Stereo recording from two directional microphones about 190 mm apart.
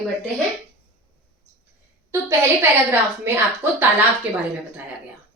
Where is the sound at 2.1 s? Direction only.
15° right (ahead or behind).